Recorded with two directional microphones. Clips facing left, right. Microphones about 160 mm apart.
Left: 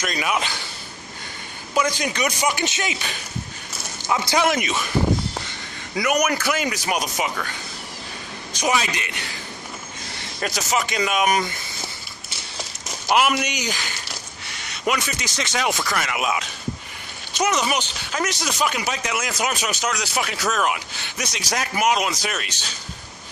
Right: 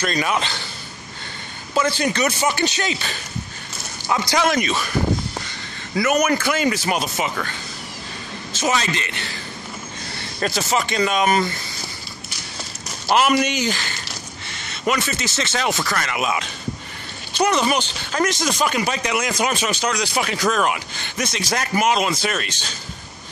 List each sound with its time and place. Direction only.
0.0 s speech: 5° left (ahead or behind)
1.7 s speech: 10° left (ahead or behind)
5.9 s speech: 10° left (ahead or behind)
8.5 s speech: 15° left (ahead or behind)
10.4 s speech: 10° left (ahead or behind)
13.1 s a man's voice: 5° left (ahead or behind)